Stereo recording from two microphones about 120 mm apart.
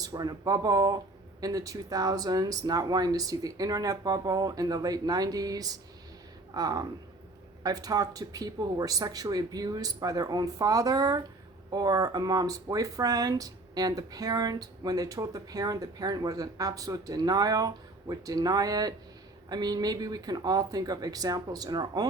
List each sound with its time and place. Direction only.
0.0 s speech: 35° right (ahead or behind)